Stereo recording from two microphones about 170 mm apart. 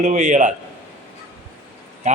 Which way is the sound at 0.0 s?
45° right (ahead or behind).